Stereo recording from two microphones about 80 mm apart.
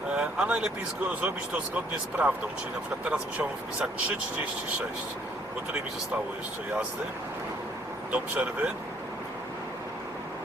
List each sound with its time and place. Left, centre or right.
0.1 s speech: centre
8.1 s speech: centre